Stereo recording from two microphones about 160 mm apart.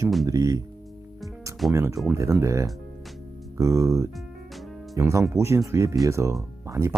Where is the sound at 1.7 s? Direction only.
20° right (ahead or behind).